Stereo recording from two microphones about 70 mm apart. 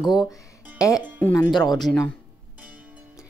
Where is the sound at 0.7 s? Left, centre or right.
Left.